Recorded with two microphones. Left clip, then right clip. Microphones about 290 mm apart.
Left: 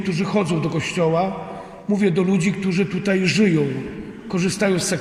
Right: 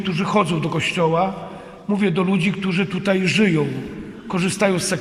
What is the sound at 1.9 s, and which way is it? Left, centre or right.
Speech, right.